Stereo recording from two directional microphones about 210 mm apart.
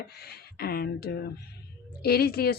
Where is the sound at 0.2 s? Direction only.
45° left (ahead or behind).